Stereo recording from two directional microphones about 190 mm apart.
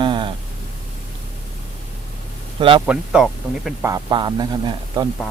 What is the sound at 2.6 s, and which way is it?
Speech, 25° right (ahead or behind).